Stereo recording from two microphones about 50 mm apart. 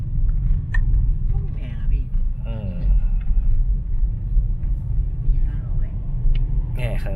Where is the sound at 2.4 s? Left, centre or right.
Centre.